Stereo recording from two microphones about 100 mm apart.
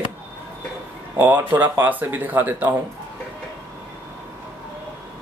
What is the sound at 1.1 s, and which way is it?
Speech, 20° right (ahead or behind).